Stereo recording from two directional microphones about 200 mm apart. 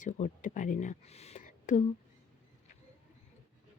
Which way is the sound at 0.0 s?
40° left (ahead or behind).